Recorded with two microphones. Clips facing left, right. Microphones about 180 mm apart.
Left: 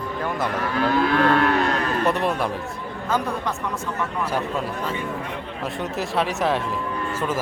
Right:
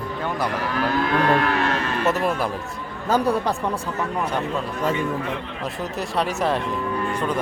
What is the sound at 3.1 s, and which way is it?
Speech, 35° right (ahead or behind).